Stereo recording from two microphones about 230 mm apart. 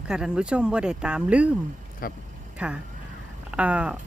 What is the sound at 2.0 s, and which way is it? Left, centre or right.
Speech, left.